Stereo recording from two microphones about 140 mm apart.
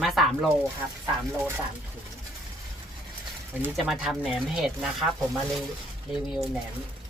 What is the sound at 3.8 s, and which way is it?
Speech, centre (ahead or behind).